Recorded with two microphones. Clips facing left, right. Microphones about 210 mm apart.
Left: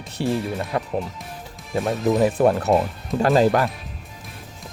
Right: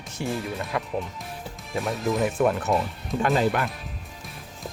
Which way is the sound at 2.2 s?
35° left (ahead or behind).